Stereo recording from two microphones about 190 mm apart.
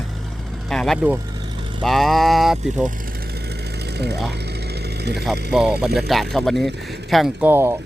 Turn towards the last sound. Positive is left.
turn(degrees=-10)  # may be behind; listen again after turning